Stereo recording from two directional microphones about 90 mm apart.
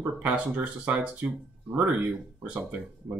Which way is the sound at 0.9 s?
15° right (ahead or behind).